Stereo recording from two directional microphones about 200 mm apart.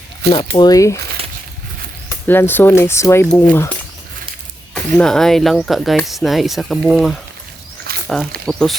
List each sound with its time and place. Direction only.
0.3 s speech: 25° left (ahead or behind)
2.0 s speech: 10° left (ahead or behind)